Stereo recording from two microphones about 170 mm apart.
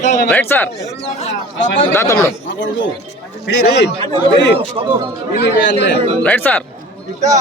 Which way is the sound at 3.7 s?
75° left (ahead or behind).